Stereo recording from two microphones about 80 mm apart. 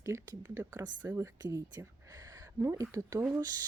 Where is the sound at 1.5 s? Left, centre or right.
Right.